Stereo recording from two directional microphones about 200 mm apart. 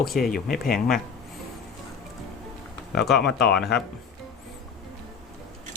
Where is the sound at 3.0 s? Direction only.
Centre (ahead or behind).